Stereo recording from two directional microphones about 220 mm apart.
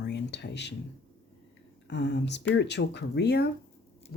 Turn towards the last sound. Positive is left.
turn(degrees=45)  # may be behind; listen again after turning